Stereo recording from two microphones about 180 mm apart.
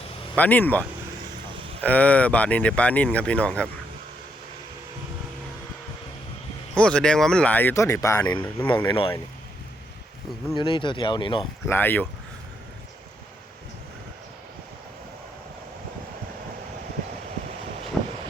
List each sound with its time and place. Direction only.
0.3 s speech: 10° left (ahead or behind)
6.7 s speech: 5° left (ahead or behind)
8.9 s speech: 30° left (ahead or behind)
10.6 s speech: 25° left (ahead or behind)
11.6 s speech: 10° left (ahead or behind)
18.0 s a sound: centre (ahead or behind)